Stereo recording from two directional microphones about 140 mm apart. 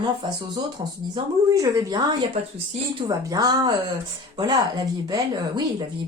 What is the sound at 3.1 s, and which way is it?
Speech, 25° right (ahead or behind).